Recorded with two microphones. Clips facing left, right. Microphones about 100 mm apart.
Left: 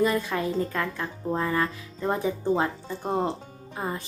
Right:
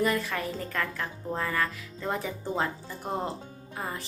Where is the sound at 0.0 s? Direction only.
20° left (ahead or behind).